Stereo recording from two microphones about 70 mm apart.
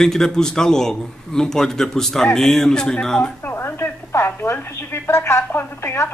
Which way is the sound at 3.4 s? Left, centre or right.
Left.